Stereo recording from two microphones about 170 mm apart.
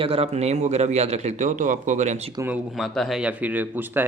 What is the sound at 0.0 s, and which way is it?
A man's voice, 35° right (ahead or behind).